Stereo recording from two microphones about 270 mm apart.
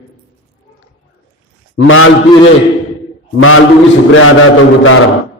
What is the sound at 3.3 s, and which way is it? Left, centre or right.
Speech, left.